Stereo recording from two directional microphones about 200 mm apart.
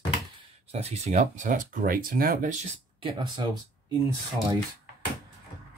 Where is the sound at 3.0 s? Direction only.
20° right (ahead or behind).